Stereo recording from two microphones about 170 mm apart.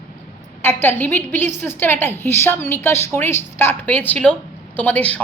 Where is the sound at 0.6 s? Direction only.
15° left (ahead or behind).